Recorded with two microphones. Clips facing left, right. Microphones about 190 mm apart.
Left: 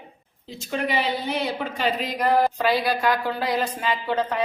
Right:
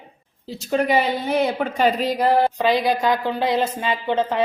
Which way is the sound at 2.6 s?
20° right (ahead or behind).